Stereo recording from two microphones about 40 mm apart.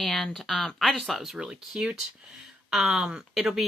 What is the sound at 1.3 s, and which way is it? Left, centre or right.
Speech, centre.